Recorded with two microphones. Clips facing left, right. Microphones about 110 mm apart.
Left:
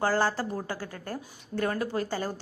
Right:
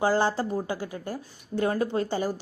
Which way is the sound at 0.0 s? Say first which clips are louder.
Right 3 dB; 20° right (ahead or behind).